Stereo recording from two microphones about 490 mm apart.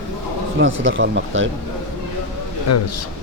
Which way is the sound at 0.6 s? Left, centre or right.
Right.